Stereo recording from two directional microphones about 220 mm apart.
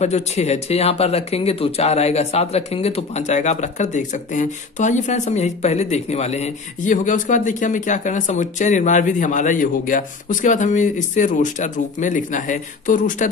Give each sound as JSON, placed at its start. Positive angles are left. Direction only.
{"t": 0.0, "sound": "speech", "side_deg": 30}